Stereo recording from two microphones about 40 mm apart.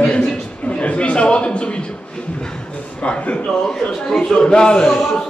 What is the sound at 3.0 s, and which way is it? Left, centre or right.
Speech, left.